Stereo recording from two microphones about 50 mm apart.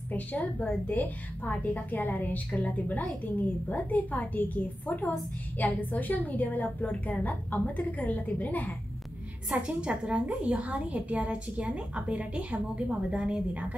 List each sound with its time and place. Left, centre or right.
0.1 s a woman's voice: left
9.5 s a woman's voice: right